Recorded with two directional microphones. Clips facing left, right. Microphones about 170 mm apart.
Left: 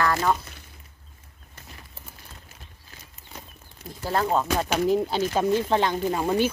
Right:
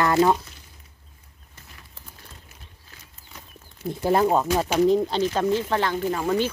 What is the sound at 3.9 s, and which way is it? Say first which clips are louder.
Speech: right 5 dB; 15° right (ahead or behind).